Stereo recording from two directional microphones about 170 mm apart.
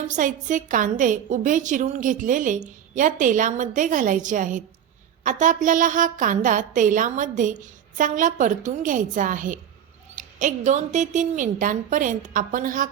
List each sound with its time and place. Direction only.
0.1 s a woman's voice: 50° right (ahead or behind)